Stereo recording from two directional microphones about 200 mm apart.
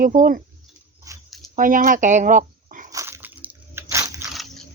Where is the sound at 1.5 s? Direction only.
40° right (ahead or behind).